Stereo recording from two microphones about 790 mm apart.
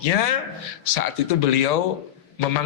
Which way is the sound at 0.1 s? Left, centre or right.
Left.